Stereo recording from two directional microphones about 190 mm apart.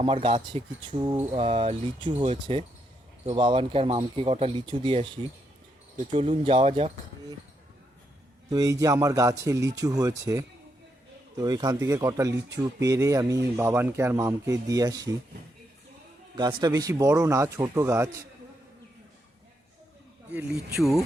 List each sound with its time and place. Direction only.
0.0 s speech: 25° right (ahead or behind)
1.1 s a man's voice: 10° right (ahead or behind)
1.4 s speech: 30° right (ahead or behind)
6.1 s speech: 30° right (ahead or behind)
8.4 s a man's voice: 20° right (ahead or behind)
16.3 s a man's voice: 25° right (ahead or behind)
20.3 s speech: 5° right (ahead or behind)